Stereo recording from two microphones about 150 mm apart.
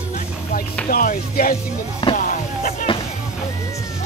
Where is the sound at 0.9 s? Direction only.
75° left (ahead or behind).